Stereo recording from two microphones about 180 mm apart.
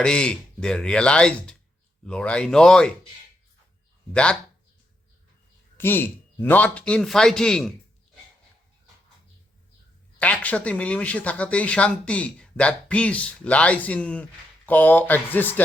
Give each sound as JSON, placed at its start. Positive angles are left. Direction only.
{"t": 0.0, "sound": "a man's voice", "side_deg": 5}
{"t": 4.1, "sound": "a man's voice", "side_deg": 5}
{"t": 5.7, "sound": "a man's voice", "side_deg": 10}
{"t": 10.2, "sound": "speech", "side_deg": 10}